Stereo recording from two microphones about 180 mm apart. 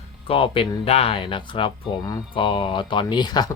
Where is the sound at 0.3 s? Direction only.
30° left (ahead or behind).